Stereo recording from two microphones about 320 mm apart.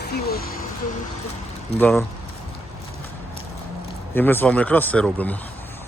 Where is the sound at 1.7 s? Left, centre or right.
Centre.